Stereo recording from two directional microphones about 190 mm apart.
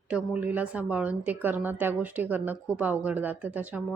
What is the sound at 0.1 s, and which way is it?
A woman's voice, 10° right (ahead or behind).